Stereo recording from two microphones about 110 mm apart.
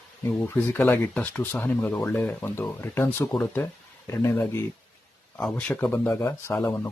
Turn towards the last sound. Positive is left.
turn(degrees=20)  # may be behind; listen again after turning